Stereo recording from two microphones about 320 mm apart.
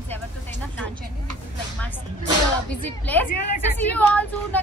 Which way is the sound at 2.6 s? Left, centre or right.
Centre.